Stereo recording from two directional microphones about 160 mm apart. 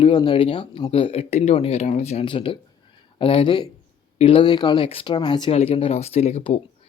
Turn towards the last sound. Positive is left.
turn(degrees=35)  # may be behind; listen again after turning